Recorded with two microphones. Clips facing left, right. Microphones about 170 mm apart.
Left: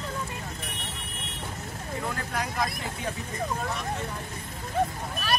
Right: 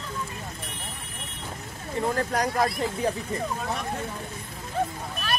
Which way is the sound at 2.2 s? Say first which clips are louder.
Right 7 dB; 40° right (ahead or behind).